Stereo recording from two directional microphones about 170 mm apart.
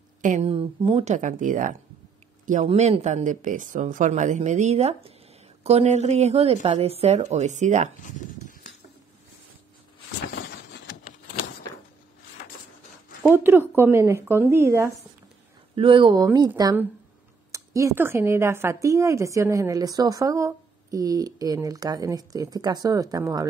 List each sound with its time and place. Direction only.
0.2 s speech: 40° right (ahead or behind)
2.6 s speech: 35° right (ahead or behind)
8.0 s a sound: 50° left (ahead or behind)
10.3 s a sound: 80° left
13.3 s speech: 10° right (ahead or behind)
15.7 s speech: 30° right (ahead or behind)